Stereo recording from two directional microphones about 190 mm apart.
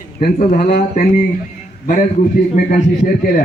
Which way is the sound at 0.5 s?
55° left (ahead or behind).